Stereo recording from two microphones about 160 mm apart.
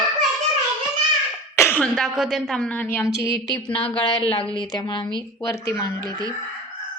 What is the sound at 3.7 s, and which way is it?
A woman's voice, 35° left (ahead or behind).